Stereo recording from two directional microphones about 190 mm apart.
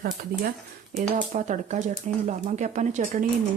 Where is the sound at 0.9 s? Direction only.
40° right (ahead or behind).